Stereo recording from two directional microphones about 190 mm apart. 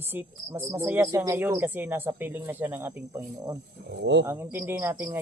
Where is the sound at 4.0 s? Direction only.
70° right (ahead or behind).